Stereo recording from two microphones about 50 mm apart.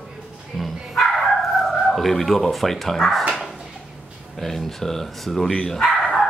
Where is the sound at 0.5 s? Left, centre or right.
Centre.